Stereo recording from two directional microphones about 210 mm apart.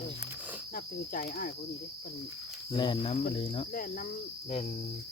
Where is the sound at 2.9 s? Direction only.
35° left (ahead or behind).